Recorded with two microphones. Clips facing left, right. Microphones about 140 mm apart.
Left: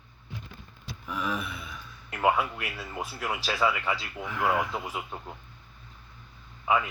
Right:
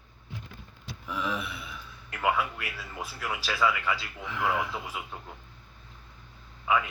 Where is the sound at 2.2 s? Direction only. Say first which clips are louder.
Left 3 dB; 25° left (ahead or behind).